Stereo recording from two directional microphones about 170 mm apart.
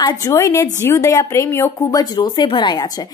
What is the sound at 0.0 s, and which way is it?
A woman's voice, 20° left (ahead or behind).